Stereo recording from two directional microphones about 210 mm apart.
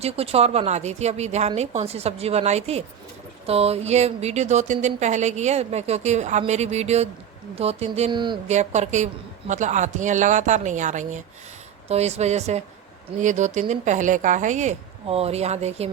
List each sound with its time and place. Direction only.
0.0 s speech: 30° right (ahead or behind)
8.5 s speech: 35° right (ahead or behind)